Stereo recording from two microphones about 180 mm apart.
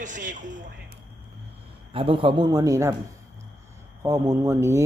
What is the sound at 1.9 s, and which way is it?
A man's voice, 30° right (ahead or behind).